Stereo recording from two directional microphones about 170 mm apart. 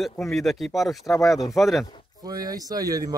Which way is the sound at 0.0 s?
Centre (ahead or behind).